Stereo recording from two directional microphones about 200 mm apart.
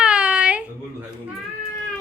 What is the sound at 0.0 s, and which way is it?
Baby cry, 5° right (ahead or behind).